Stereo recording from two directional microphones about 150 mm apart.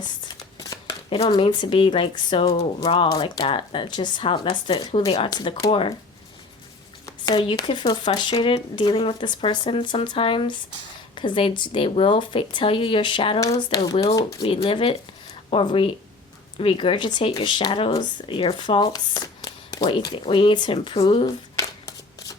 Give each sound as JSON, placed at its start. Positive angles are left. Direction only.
{"t": 0.0, "sound": "a sound", "side_deg": 25}
{"t": 1.1, "sound": "speech", "side_deg": 35}
{"t": 7.3, "sound": "speech", "side_deg": 35}
{"t": 13.4, "sound": "speech", "side_deg": 25}
{"t": 14.3, "sound": "speech", "side_deg": 35}
{"t": 18.9, "sound": "a sound", "side_deg": 25}
{"t": 20.1, "sound": "speech", "side_deg": 35}